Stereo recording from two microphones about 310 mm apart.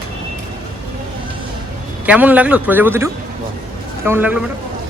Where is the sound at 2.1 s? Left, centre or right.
Centre.